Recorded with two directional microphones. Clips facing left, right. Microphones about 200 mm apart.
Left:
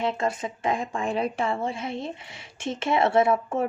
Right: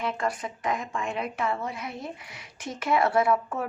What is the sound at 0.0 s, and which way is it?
Speech, 25° left (ahead or behind).